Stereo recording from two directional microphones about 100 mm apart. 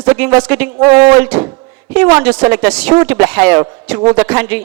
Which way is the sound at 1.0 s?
45° right (ahead or behind).